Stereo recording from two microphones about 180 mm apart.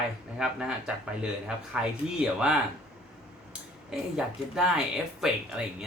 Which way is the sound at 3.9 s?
5° right (ahead or behind).